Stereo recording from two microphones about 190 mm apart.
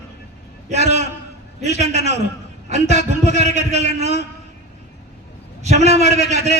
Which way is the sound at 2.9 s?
60° left (ahead or behind).